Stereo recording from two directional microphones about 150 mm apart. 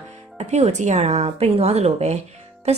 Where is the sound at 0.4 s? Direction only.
45° right (ahead or behind).